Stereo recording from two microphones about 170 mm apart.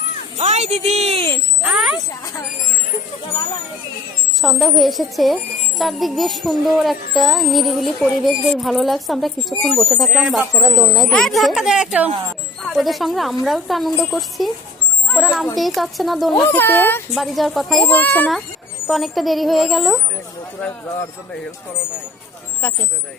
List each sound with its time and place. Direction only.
0.3 s speech: 40° right (ahead or behind)
1.6 s speech: 5° right (ahead or behind)
4.4 s speech: centre (ahead or behind)
16.3 s a child's voice: 25° left (ahead or behind)
16.6 s speech: 10° left (ahead or behind)
17.2 s speech: centre (ahead or behind)